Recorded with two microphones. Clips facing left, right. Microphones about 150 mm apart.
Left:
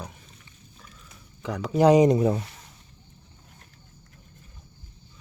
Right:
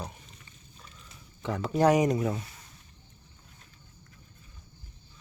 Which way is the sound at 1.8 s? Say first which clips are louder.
Left 6 dB; 20° left (ahead or behind).